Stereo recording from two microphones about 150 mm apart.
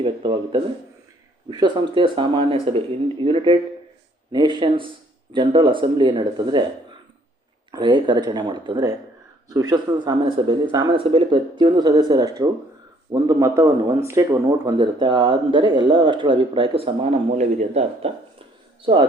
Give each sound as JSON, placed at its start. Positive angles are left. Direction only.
{"t": 0.0, "sound": "a sound", "side_deg": -35}
{"t": 1.5, "sound": "speech", "side_deg": -30}
{"t": 7.7, "sound": "speech", "side_deg": -30}